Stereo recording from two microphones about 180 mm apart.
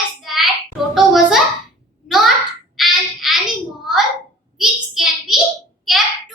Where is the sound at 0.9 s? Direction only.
Centre (ahead or behind).